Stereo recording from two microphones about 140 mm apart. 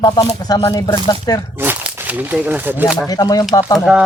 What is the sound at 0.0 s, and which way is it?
Speech, 25° left (ahead or behind).